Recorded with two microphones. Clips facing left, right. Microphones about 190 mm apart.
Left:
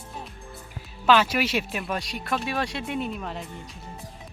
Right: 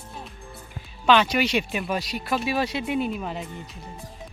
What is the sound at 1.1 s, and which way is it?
Speech, 5° left (ahead or behind).